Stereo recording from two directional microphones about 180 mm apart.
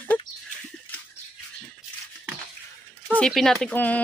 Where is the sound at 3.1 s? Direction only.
5° left (ahead or behind).